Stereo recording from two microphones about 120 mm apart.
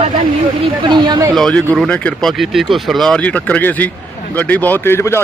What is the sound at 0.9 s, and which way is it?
Speech, 35° right (ahead or behind).